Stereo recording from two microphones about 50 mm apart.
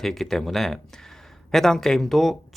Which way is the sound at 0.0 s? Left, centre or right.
Centre.